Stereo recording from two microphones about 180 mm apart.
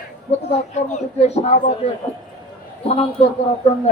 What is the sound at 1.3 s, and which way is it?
A man's voice, 35° left (ahead or behind).